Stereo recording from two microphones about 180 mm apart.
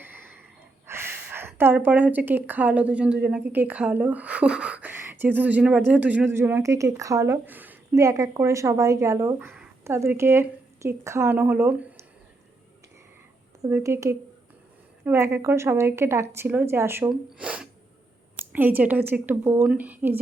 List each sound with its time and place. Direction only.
0.0 s wheeze: 10° right (ahead or behind)
0.9 s speech: 10° right (ahead or behind)
13.6 s speech: 15° right (ahead or behind)
17.3 s sneeze: 5° right (ahead or behind)
18.5 s speech: 10° right (ahead or behind)